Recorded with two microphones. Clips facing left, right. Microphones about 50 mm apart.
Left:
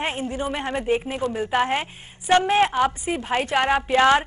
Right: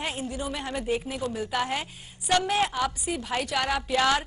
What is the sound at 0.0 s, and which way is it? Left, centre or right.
A woman's voice, left.